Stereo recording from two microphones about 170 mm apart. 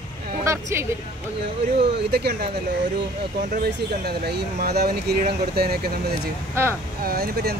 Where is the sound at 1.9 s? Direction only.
80° right.